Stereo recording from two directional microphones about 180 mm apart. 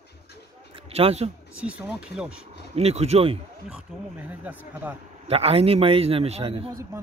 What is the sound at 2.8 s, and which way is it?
Speech, 35° right (ahead or behind).